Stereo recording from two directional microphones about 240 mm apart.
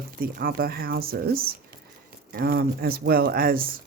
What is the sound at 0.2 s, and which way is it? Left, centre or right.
Speech, right.